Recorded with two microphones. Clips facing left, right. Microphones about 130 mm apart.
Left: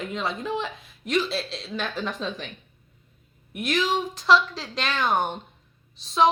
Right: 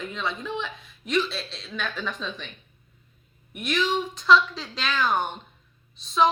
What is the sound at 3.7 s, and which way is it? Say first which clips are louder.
A woman's voice: left 1 dB; 35° left (ahead or behind).